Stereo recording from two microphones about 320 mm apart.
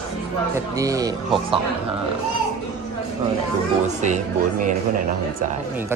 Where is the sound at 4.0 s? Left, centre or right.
Right.